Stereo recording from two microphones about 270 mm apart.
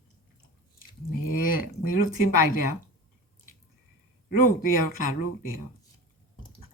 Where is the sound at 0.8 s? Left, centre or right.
Left.